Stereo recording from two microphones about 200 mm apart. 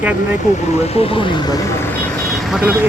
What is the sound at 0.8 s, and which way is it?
Speech, 30° left (ahead or behind).